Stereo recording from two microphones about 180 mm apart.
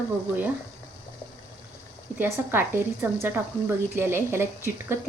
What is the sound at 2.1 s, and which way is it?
A woman's voice, 10° right (ahead or behind).